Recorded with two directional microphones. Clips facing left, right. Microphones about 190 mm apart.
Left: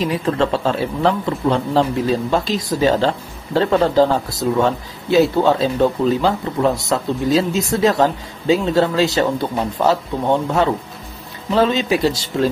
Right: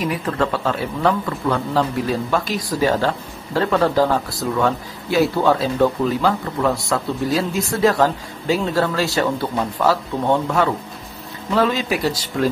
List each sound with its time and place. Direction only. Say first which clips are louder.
0.0 s a man's voice: left 3 dB; 25° left (ahead or behind)